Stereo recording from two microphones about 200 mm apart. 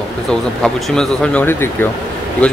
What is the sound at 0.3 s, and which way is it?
Speech, 5° left (ahead or behind).